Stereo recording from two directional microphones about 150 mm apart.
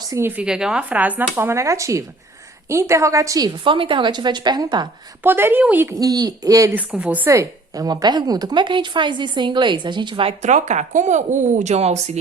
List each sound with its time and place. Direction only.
0.0 s a woman's voice: 20° right (ahead or behind)
5.2 s a woman's voice: 15° right (ahead or behind)
6.7 s a woman's voice: 10° right (ahead or behind); by 12.1 s 45° right (ahead or behind)